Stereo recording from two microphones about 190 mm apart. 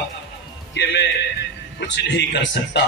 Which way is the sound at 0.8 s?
70° left (ahead or behind).